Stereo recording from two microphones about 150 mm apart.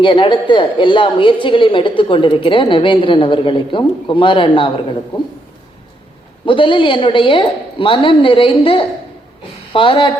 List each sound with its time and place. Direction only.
0.0 s speech: 35° left (ahead or behind)
6.4 s speech: 35° left (ahead or behind)